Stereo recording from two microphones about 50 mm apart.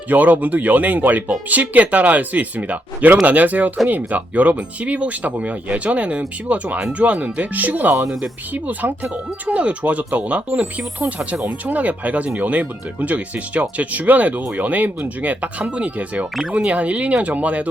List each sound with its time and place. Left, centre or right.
0.1 s speech: right
16.3 s speech: centre
16.6 s speech: right